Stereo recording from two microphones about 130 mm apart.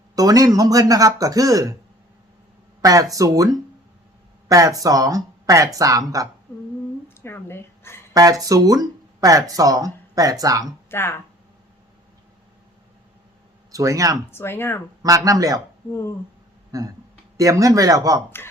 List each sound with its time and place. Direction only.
0.2 s speech: 30° right (ahead or behind)
2.8 s speech: 25° right (ahead or behind)
7.1 s a sound: 20° left (ahead or behind)
8.1 s speech: 25° right (ahead or behind)
10.8 s speech: 20° left (ahead or behind)
13.7 s speech: 25° right (ahead or behind)
14.3 s speech: 15° left (ahead or behind)
15.0 s speech: 25° right (ahead or behind)
16.7 s speech: 25° right (ahead or behind)